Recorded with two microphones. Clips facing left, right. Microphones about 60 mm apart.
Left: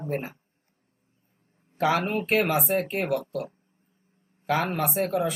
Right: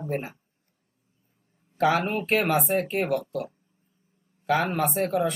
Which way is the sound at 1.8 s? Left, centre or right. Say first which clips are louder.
Right 1 dB; centre.